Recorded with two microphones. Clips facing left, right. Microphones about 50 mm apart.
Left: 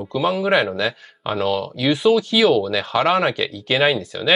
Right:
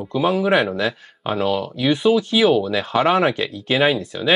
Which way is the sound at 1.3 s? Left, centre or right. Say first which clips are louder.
Even; centre.